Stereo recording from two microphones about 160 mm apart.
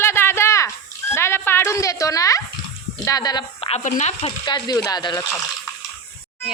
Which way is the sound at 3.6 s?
45° left (ahead or behind).